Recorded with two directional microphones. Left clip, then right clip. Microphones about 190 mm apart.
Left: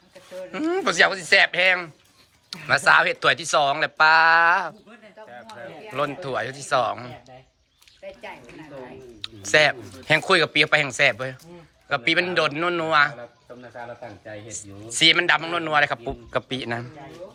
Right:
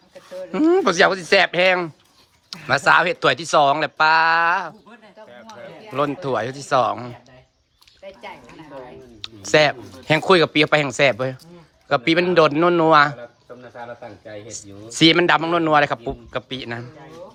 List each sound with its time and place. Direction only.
0.5 s speech: 20° right (ahead or behind)
5.9 s speech: 20° right (ahead or behind)
8.0 s a sound: 45° right (ahead or behind)
9.2 s speech: 20° right (ahead or behind)
14.3 s speech: 30° right (ahead or behind)
16.3 s a man's voice: 5° right (ahead or behind)